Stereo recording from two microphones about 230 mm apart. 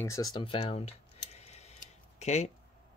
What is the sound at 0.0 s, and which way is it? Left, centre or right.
Speech, centre.